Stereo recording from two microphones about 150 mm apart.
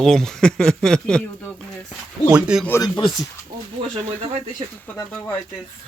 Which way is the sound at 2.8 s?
30° left (ahead or behind).